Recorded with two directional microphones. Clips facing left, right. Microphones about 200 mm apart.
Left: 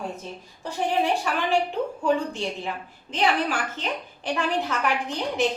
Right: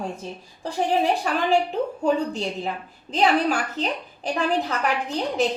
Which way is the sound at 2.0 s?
40° right (ahead or behind).